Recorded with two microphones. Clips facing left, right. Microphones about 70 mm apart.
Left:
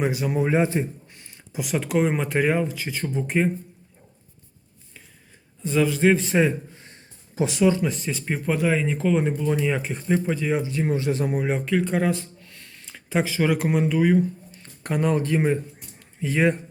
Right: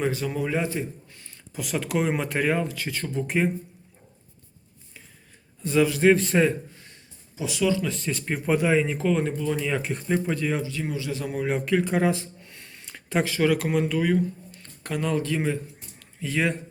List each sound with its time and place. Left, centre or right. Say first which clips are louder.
0.0 s a man's voice: left 3 dB; centre
1.5 s speech: left 3 dB; centre
5.6 s speech: even; centre
6.7 s a sound: left 2 dB; left
7.3 s speech: left 7 dB; left
7.6 s a man's voice: left 3 dB; left
7.9 s speech: left 2 dB; centre
8.1 s speech: right 1 dB; centre
10.6 s speech: left 5 dB; left
11.3 s speech: left 1 dB; centre
11.6 s speech: right 3 dB; centre
12.5 s a sound: right 1 dB; centre
12.8 s speech: left 1 dB; centre; by 15.5 s left
16.0 s a sound: left 4 dB; left